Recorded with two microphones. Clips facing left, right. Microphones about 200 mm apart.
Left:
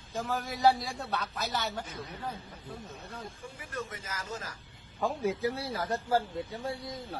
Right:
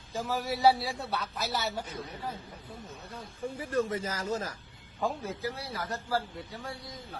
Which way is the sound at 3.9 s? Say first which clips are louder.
Right 8 dB; 35° right (ahead or behind).